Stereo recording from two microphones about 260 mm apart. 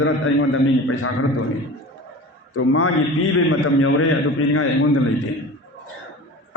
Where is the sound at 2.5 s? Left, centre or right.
Left.